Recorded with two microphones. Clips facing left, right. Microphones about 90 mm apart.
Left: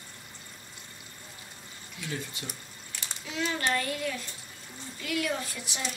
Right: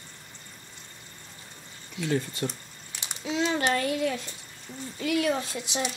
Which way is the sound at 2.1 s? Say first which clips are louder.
Right 10 dB; 45° right (ahead or behind).